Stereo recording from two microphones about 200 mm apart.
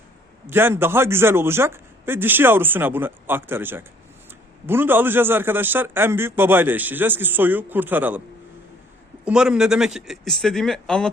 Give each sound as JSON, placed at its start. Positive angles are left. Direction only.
{"t": 0.4, "sound": "a man's voice", "side_deg": -10}
{"t": 9.2, "sound": "speech", "side_deg": -5}